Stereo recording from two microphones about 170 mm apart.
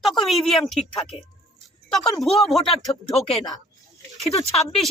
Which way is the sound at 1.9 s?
Centre (ahead or behind).